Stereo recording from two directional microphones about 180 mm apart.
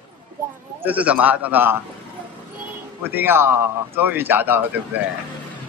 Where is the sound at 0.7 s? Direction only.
10° right (ahead or behind).